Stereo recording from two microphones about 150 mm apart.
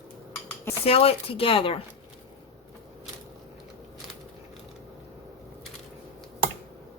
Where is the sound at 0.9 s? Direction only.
40° left (ahead or behind).